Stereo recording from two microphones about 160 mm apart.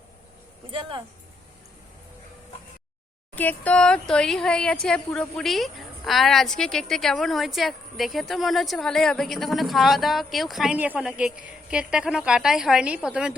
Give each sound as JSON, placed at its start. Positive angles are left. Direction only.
{"t": 0.7, "sound": "speech", "side_deg": -30}
{"t": 3.3, "sound": "speech", "side_deg": 10}